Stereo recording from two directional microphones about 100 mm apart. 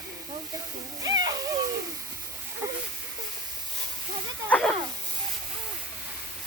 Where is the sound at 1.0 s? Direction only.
40° right (ahead or behind).